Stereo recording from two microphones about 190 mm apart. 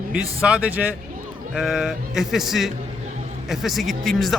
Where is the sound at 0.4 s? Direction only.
5° right (ahead or behind).